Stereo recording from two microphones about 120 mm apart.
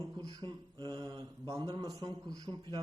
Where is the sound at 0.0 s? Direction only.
35° right (ahead or behind).